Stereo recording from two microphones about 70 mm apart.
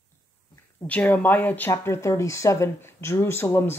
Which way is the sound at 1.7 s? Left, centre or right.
Left.